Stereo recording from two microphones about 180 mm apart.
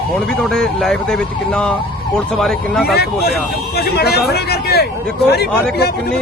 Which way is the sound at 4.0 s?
60° left (ahead or behind).